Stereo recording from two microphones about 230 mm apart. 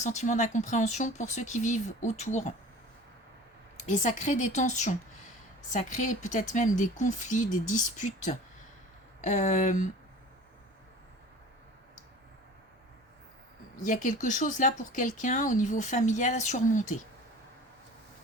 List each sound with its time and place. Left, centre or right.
0.0 s speech: left
3.8 s speech: left
13.8 s speech: left